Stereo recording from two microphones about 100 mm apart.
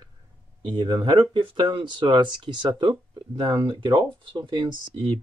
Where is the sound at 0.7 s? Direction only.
50° right (ahead or behind).